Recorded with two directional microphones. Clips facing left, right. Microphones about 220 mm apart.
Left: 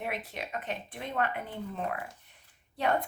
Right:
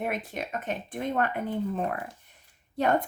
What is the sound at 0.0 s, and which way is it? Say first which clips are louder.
Speech: right 5 dB; 45° right (ahead or behind).